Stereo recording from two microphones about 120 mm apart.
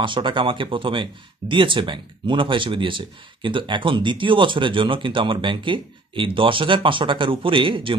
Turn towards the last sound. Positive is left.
turn(degrees=-45)  # may be behind; listen again after turning